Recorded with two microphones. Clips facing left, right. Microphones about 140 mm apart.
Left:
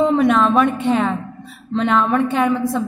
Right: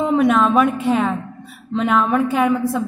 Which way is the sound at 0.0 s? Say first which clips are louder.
Left 1 dB; centre (ahead or behind).